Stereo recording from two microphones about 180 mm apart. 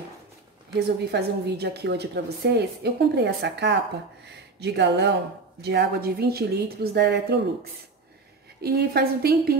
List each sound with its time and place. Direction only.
0.7 s a woman's voice: 70° right (ahead or behind)
8.5 s a woman's voice: 60° right (ahead or behind)